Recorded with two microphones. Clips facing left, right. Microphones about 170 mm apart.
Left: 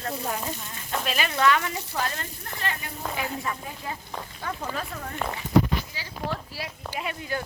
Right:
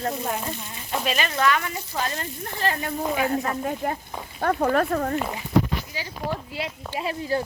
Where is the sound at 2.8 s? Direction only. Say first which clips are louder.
Right 8 dB; 50° right (ahead or behind).